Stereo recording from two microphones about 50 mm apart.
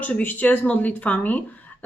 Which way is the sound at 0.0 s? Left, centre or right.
Left.